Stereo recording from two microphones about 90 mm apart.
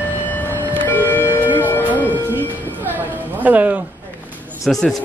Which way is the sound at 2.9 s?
20° right (ahead or behind).